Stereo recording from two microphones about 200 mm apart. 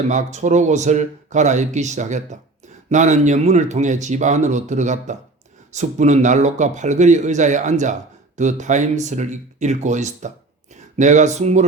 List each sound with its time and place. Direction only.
0.1 s speech: 35° right (ahead or behind)